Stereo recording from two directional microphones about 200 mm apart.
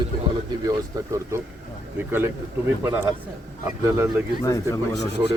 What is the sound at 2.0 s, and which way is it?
Speech, 10° right (ahead or behind).